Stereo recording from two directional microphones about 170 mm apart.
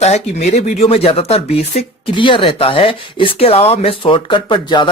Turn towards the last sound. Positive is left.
turn(degrees=25)  # may be behind; listen again after turning